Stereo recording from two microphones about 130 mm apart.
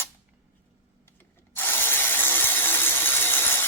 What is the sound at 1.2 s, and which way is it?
Ratchet, 15° left (ahead or behind).